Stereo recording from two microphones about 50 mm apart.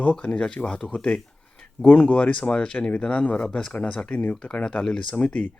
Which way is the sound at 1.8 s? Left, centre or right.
Left.